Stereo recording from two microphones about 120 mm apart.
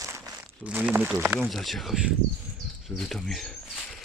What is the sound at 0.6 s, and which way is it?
Speech, 10° right (ahead or behind).